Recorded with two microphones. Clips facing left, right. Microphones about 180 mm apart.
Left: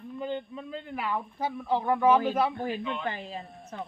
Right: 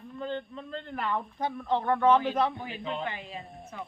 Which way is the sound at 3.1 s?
35° left (ahead or behind).